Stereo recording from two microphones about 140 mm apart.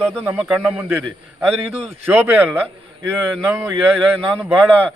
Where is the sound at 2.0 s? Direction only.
15° right (ahead or behind).